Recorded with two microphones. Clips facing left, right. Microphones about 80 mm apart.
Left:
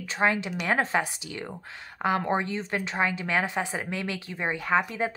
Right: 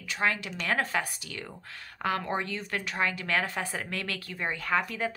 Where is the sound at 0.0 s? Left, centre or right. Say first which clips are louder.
Left 4 dB; left.